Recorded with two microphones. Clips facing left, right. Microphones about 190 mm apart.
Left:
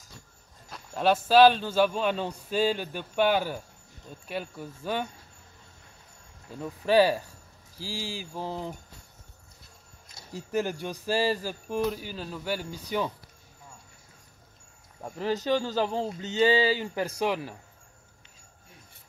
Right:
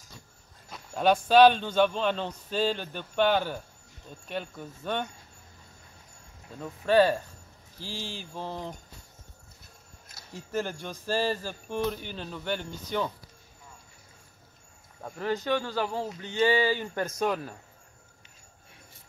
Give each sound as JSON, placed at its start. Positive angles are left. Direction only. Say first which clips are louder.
{"t": 0.7, "sound": "a man's voice", "louder": "right 1 dB", "side_deg": 0}
{"t": 6.6, "sound": "a man's voice", "louder": "even", "side_deg": 10}
{"t": 10.5, "sound": "a man's voice", "louder": "left 3 dB", "side_deg": 10}
{"t": 15.0, "sound": "a man's voice", "louder": "left 1 dB", "side_deg": 10}